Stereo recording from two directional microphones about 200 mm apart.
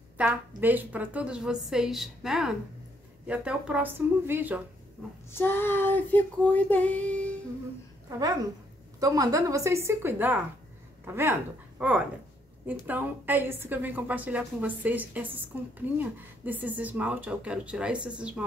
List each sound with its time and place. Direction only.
0.2 s a woman's voice: 5° right (ahead or behind)
5.3 s female singing: 10° left (ahead or behind)
8.2 s a woman's voice: 20° right (ahead or behind)